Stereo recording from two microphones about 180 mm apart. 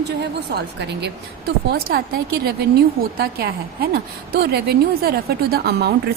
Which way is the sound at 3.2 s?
55° right (ahead or behind).